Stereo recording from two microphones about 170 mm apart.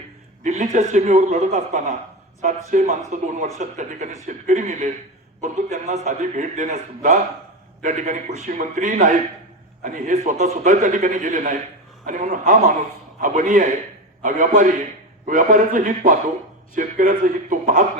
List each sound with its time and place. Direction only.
0.4 s a man's voice: 45° right (ahead or behind)